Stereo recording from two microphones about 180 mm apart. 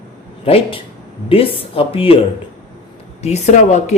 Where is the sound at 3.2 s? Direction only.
40° left (ahead or behind).